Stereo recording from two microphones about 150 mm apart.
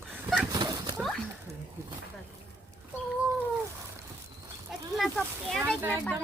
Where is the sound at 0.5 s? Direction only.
30° right (ahead or behind).